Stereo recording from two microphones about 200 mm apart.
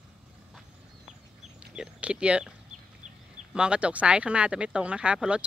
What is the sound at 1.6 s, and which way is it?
Speech, 5° right (ahead or behind).